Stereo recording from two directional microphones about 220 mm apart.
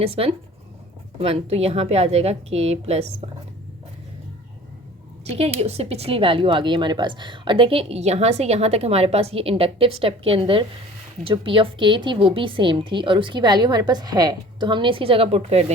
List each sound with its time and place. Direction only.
0.0 s speech: 25° right (ahead or behind)
5.2 s speech: 30° right (ahead or behind)